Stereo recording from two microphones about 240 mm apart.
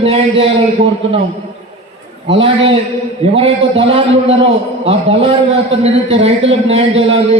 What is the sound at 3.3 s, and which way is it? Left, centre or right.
A man's voice, right.